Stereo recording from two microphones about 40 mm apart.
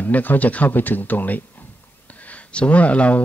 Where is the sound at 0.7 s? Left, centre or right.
Left.